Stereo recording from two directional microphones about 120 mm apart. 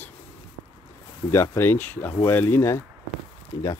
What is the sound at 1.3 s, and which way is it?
Speech, 20° left (ahead or behind).